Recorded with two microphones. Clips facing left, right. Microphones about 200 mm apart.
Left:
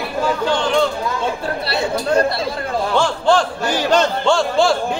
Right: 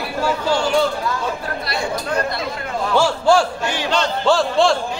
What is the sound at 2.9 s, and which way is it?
Speech, 10° right (ahead or behind).